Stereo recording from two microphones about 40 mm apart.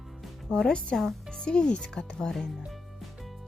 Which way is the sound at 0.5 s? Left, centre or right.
Centre.